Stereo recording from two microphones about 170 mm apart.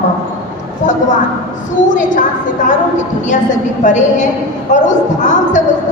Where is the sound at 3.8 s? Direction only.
45° left (ahead or behind).